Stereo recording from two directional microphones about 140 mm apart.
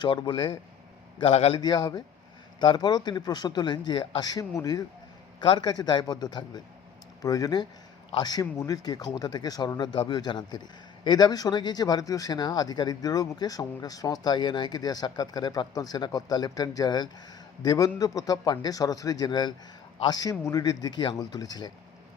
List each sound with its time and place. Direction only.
0.0 s speech: 35° left (ahead or behind)
1.2 s speech: 45° left (ahead or behind); by 21.7 s 30° left (ahead or behind)